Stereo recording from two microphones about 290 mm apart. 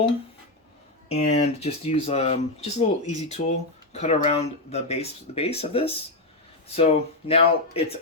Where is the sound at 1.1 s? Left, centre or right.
Left.